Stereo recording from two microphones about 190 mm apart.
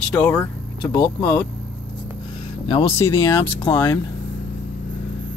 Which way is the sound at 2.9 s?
15° left (ahead or behind).